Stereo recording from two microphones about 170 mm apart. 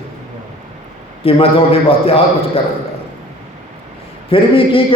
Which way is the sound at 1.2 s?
35° left (ahead or behind).